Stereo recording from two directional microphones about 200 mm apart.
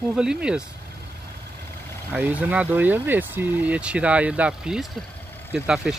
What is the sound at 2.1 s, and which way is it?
Speech, 10° right (ahead or behind).